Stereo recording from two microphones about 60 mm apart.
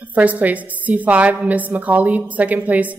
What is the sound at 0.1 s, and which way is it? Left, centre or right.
A woman's voice, right.